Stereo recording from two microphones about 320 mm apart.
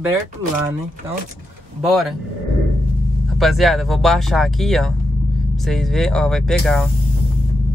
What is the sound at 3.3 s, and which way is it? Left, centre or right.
Speech, centre.